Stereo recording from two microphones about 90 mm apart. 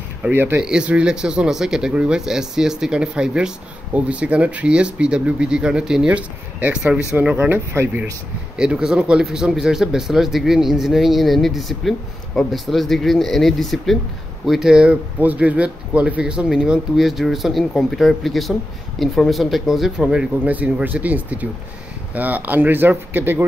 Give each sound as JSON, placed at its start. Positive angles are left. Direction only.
{"t": 0.3, "sound": "speech", "side_deg": -20}
{"t": 0.6, "sound": "speech", "side_deg": -10}
{"t": 8.5, "sound": "speech", "side_deg": -10}